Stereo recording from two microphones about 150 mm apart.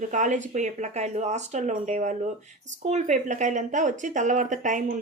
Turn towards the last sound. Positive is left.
turn(degrees=-55)  # may be behind; listen again after turning